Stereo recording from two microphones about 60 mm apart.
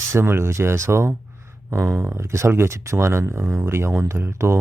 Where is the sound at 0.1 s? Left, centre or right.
Right.